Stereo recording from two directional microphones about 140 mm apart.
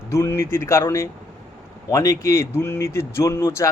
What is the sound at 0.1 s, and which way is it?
Speech, 20° left (ahead or behind).